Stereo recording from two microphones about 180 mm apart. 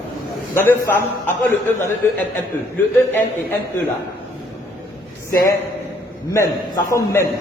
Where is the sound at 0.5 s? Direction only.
10° left (ahead or behind).